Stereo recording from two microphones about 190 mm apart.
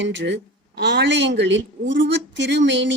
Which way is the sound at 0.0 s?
70° right (ahead or behind).